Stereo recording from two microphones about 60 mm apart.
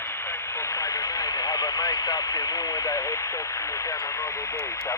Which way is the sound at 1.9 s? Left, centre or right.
Left.